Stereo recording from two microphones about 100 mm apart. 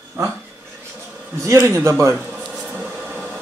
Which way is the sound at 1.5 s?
30° right (ahead or behind).